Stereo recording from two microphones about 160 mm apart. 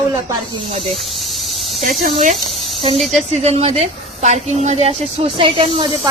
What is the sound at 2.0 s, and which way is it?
A woman's voice, 50° right (ahead or behind).